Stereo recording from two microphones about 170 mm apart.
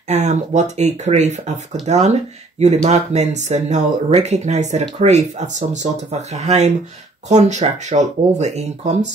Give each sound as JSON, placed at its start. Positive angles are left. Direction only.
{"t": 0.1, "sound": "speech", "side_deg": -40}